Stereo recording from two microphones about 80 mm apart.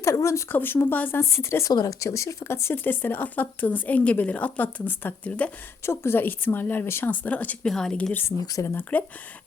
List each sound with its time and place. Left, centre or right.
0.0 s speech: left
0.5 s speech: left
1.7 s speech: left
5.8 s speech: left
7.7 s a woman's voice: centre
8.5 s speech: left